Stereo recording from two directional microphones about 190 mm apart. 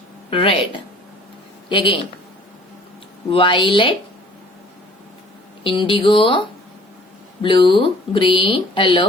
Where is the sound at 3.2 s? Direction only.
25° left (ahead or behind).